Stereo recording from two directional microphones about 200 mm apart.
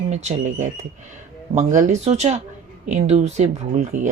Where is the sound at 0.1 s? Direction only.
35° right (ahead or behind).